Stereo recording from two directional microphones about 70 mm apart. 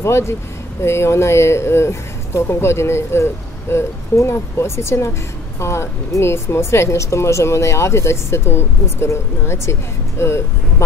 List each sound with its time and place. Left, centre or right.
0.0 s speech: left